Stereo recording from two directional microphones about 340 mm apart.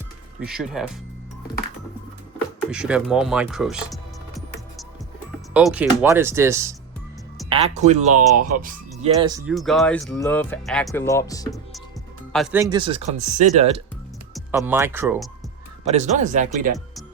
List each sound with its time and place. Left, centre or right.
0.3 s speech: centre
2.6 s music: centre
5.5 s speech: centre
7.5 s speech: centre
9.5 s speech: centre
14.3 s speech: centre
15.8 s speech: centre